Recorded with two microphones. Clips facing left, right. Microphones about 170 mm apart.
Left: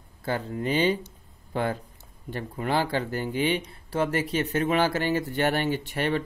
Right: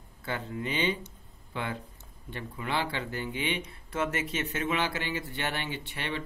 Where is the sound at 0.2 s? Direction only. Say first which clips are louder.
Left 6 dB; 40° left (ahead or behind).